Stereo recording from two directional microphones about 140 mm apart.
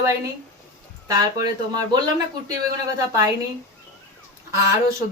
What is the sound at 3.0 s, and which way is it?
Speech, 25° right (ahead or behind).